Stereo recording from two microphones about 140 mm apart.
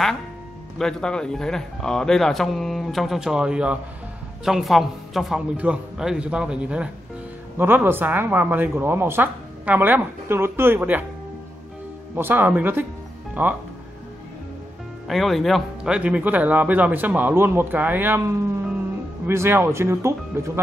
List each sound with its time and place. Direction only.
0.7 s speech: 5° left (ahead or behind); by 11.1 s 10° right (ahead or behind)
12.2 s speech: 15° right (ahead or behind)
15.0 s speech: centre (ahead or behind); by 20.5 s 20° right (ahead or behind)